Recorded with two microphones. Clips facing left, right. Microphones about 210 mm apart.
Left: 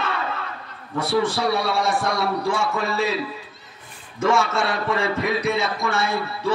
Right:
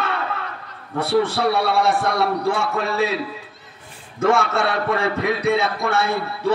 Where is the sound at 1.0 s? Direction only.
60° right (ahead or behind).